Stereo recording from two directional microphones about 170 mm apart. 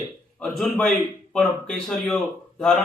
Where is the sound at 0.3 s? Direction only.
5° left (ahead or behind).